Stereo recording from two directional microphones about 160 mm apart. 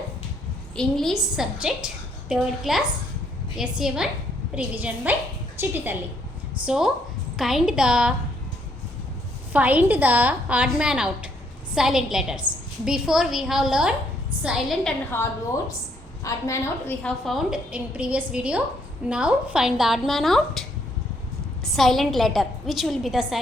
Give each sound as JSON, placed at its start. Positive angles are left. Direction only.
{"t": 0.8, "sound": "a woman's voice", "side_deg": 0}
{"t": 9.5, "sound": "a woman's voice", "side_deg": -10}
{"t": 15.1, "sound": "a woman's voice", "side_deg": 15}
{"t": 17.0, "sound": "a woman's voice", "side_deg": 5}